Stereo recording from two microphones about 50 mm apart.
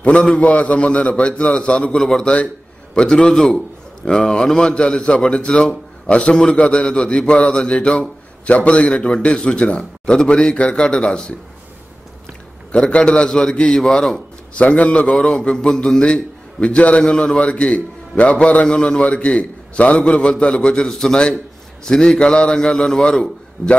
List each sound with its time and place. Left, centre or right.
0.0 s a man's voice: left
2.0 s a man's voice: centre
12.7 s a man's voice: centre
14.6 s a man's voice: left
15.0 s a man's voice: centre